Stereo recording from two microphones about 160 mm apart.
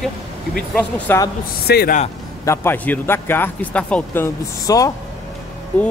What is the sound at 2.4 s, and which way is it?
A man's voice, 10° left (ahead or behind).